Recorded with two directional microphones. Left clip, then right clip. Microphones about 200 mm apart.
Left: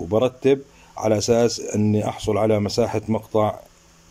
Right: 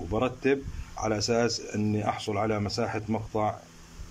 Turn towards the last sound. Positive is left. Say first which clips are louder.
# left 8 dB
turn(degrees=20)  # may be behind; listen again after turning